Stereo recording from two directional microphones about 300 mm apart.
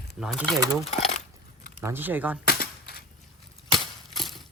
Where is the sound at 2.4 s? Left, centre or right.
Left.